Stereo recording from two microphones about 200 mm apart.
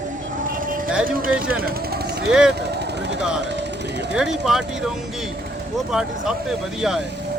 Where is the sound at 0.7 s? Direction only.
45° right (ahead or behind).